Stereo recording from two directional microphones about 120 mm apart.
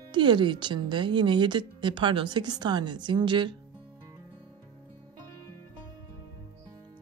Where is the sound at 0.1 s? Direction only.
40° right (ahead or behind).